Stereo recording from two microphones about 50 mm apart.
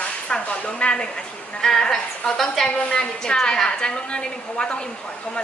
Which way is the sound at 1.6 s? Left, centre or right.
Centre.